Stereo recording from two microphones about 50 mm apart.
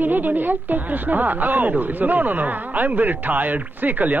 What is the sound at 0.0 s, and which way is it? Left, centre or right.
Speech, right.